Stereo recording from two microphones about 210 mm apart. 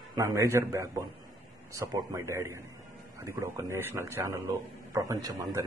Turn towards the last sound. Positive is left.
turn(degrees=-15)  # may be behind; listen again after turning